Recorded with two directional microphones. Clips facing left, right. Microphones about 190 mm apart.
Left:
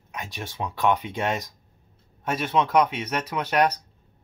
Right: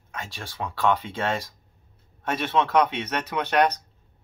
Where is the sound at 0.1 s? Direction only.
15° left (ahead or behind).